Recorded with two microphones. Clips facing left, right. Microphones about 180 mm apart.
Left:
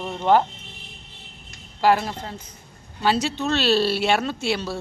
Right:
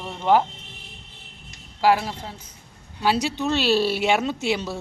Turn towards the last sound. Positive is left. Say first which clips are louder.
# even
turn(degrees=-15)  # may be behind; listen again after turning